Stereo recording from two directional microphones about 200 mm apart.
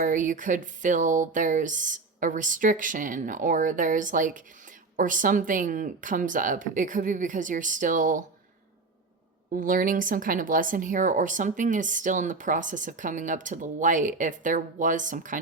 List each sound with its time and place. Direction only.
0.0 s speech: 40° right (ahead or behind)
9.6 s speech: 40° right (ahead or behind)